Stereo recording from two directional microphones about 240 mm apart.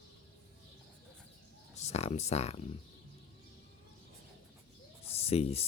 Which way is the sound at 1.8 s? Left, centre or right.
Left.